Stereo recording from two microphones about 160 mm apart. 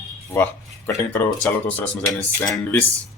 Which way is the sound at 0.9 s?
15° left (ahead or behind).